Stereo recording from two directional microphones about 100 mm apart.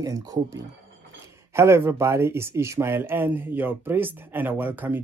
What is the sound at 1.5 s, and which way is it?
Speech, 25° right (ahead or behind).